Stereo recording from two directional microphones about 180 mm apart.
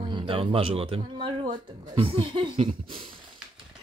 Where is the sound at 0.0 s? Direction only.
30° right (ahead or behind).